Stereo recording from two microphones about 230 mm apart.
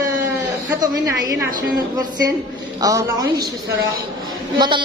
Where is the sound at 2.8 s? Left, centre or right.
Centre.